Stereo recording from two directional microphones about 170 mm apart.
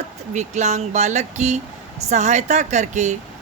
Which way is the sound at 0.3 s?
45° right (ahead or behind).